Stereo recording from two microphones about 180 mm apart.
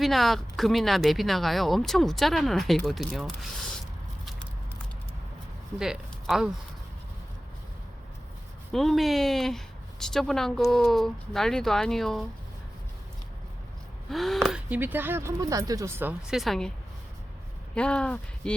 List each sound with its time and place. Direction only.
0.0 s speech: centre (ahead or behind)
5.8 s speech: centre (ahead or behind)
8.7 s a woman's voice: centre (ahead or behind)
14.1 s speech: centre (ahead or behind)
14.7 s speech: 10° right (ahead or behind)
17.7 s speech: 5° left (ahead or behind)